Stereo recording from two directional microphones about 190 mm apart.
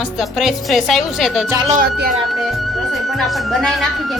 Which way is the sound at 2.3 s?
Centre (ahead or behind).